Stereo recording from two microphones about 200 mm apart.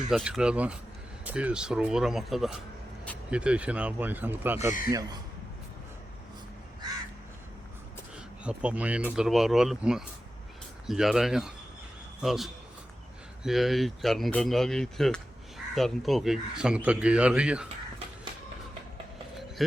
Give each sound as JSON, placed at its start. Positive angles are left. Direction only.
{"t": 0.1, "sound": "speech", "side_deg": 0}
{"t": 8.4, "sound": "speech", "side_deg": -5}